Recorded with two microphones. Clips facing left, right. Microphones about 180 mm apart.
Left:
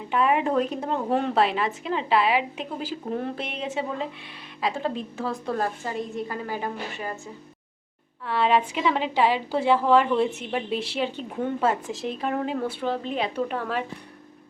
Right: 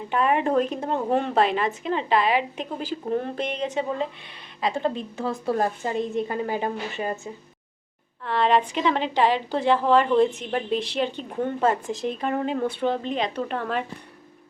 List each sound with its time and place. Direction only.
0.1 s a woman's voice: 5° left (ahead or behind)
5.5 s a woman's voice: 20° right (ahead or behind)
8.2 s a woman's voice: 5° left (ahead or behind)